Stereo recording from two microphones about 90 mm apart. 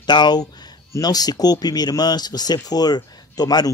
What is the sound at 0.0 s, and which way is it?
Speech, 55° left (ahead or behind).